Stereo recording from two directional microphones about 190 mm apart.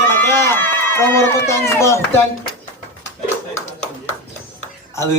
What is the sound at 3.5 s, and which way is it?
Clapping, 35° left (ahead or behind).